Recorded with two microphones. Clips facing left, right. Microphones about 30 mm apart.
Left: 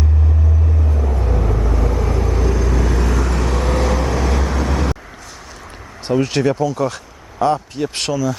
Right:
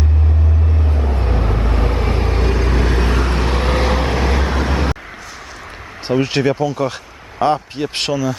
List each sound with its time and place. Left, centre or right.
0.6 s vehicle: right
6.1 s speech: right